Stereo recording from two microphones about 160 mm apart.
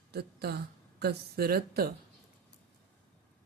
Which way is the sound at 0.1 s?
85° right.